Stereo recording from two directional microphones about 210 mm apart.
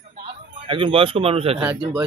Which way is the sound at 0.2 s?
25° right (ahead or behind).